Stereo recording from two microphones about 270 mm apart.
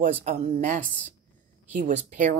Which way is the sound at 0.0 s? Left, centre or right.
Right.